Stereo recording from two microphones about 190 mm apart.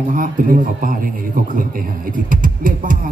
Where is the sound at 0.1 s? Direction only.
45° right (ahead or behind).